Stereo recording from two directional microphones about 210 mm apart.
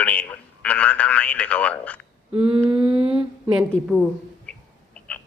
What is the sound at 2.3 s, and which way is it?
Humming, 25° right (ahead or behind).